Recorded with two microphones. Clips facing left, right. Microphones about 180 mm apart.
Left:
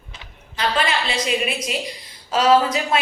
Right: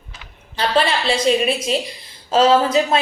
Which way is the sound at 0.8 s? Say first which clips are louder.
Right 5 dB; 30° right (ahead or behind).